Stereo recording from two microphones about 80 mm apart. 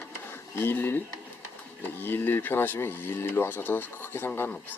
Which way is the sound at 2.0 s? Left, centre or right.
Left.